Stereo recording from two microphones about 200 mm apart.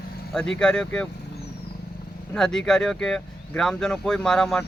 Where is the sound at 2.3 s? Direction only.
5° left (ahead or behind).